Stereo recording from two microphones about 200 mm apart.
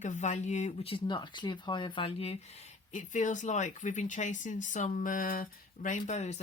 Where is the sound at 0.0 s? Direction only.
35° left (ahead or behind).